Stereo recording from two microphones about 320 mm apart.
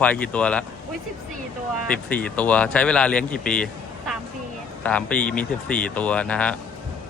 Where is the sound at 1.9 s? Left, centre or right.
Centre.